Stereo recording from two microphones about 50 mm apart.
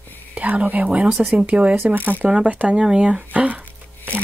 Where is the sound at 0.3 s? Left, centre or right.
Right.